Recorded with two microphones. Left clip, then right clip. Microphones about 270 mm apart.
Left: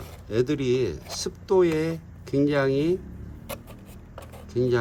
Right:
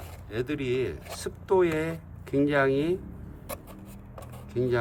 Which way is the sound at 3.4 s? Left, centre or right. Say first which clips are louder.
Left 2 dB; centre.